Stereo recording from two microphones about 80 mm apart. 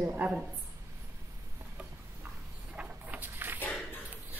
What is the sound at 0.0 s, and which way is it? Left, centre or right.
Speech, right.